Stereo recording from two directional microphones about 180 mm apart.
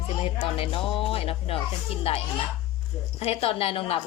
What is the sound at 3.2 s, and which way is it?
Speech, 35° left (ahead or behind).